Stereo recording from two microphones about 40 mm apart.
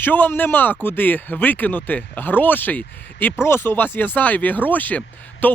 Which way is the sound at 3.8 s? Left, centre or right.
Left.